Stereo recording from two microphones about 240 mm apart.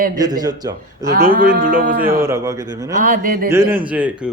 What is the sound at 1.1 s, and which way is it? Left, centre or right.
Speech, right.